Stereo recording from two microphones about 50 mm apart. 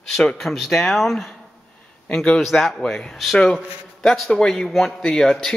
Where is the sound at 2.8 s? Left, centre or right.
Centre.